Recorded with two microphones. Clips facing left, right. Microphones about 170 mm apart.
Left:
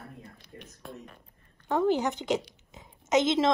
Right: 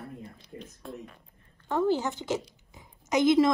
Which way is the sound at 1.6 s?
20° left (ahead or behind).